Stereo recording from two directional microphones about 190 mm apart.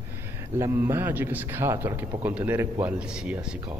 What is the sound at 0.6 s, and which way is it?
A man's voice, 15° right (ahead or behind).